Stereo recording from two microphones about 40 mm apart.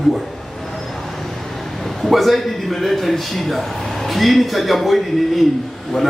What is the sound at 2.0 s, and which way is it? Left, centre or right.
A man's voice, centre.